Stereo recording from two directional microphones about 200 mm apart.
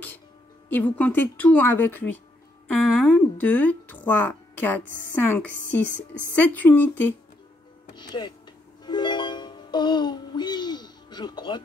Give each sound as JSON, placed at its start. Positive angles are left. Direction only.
{"t": 0.7, "sound": "speech", "side_deg": 10}
{"t": 7.9, "sound": "speech", "side_deg": 20}
{"t": 8.8, "sound": "music", "side_deg": 20}